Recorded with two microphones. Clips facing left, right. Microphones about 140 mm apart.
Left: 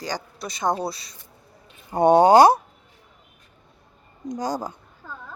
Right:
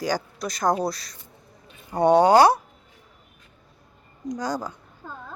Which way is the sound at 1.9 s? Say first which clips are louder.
Left 2 dB; 25° left (ahead or behind).